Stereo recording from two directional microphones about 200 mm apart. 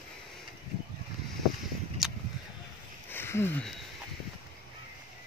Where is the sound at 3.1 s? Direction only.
10° left (ahead or behind).